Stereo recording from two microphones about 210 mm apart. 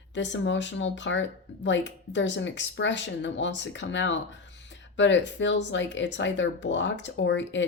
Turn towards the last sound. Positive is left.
turn(degrees=60)  # may be behind; listen again after turning